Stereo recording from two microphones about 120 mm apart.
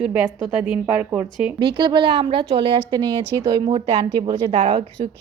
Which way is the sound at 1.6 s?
40° right (ahead or behind).